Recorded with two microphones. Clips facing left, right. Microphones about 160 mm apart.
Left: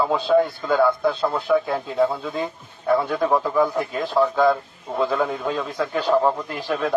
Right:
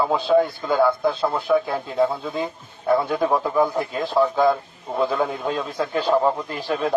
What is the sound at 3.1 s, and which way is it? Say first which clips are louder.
Speech: even; 15° right (ahead or behind).